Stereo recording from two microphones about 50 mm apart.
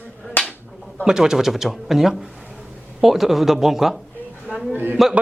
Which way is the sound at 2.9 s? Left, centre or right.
Centre.